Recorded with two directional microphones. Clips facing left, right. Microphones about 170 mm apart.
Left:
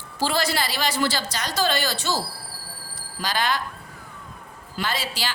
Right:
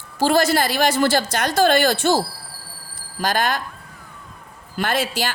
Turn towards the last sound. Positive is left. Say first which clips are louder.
# right 6 dB
turn(degrees=-50)  # may be behind; listen again after turning